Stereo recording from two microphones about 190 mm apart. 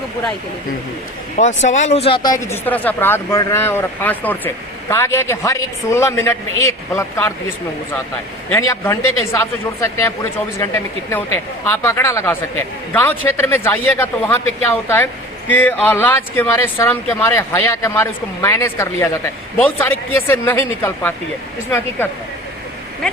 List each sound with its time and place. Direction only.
1.4 s speech: 40° left (ahead or behind); by 7.3 s 15° left (ahead or behind)
8.5 s speech: 15° left (ahead or behind)
11.1 s speech: 10° left (ahead or behind)